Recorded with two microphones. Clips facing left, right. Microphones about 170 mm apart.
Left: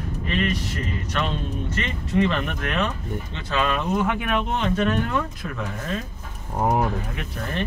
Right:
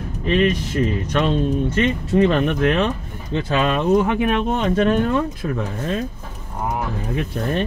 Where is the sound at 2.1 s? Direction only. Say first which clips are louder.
Right 5 dB; 35° right (ahead or behind).